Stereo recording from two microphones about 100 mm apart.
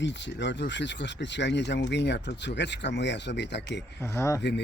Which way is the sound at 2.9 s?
90° left.